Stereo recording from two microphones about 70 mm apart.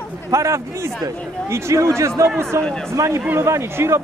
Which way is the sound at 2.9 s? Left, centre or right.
Right.